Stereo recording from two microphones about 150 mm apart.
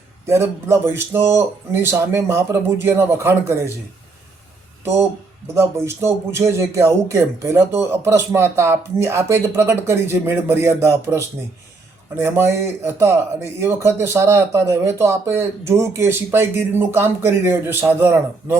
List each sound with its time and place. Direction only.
0.3 s speech: 15° right (ahead or behind)
4.8 s speech: 15° right (ahead or behind)